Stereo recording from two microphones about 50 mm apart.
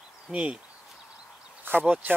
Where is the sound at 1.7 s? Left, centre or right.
Right.